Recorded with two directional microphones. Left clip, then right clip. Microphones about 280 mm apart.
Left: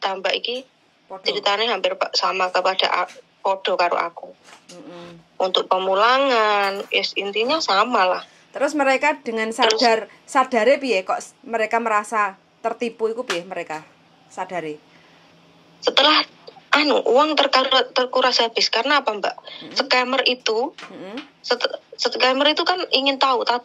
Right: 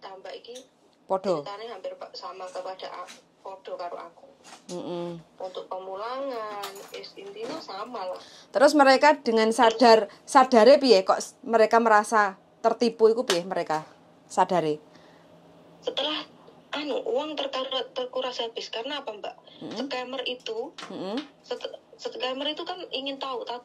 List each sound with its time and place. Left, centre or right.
0.0 s speech: left
5.4 s speech: left
8.7 s speech: centre
10.4 s speech: right
14.3 s a woman's voice: right
15.8 s speech: left